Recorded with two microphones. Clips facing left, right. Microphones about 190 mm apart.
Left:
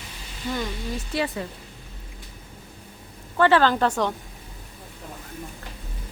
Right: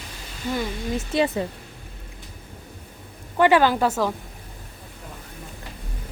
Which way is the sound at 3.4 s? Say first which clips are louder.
Right 1 dB; 15° right (ahead or behind).